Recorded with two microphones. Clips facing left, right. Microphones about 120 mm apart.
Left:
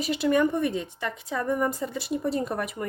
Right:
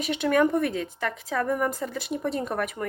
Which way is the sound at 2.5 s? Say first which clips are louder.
Right 1 dB; 30° left (ahead or behind).